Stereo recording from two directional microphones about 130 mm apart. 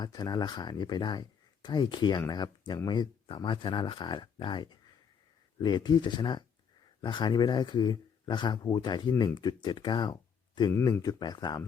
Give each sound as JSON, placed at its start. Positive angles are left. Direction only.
{"t": 0.0, "sound": "speech", "side_deg": 30}
{"t": 10.7, "sound": "speech", "side_deg": 20}